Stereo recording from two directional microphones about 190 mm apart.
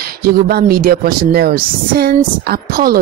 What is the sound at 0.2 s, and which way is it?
Speech, 55° right (ahead or behind).